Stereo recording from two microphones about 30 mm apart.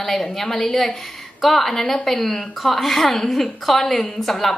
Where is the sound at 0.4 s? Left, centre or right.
Centre.